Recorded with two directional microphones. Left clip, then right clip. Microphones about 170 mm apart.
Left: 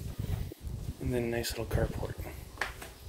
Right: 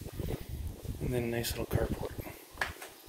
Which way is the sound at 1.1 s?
30° left (ahead or behind).